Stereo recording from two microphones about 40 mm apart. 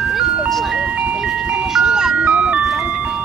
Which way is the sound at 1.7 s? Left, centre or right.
Centre.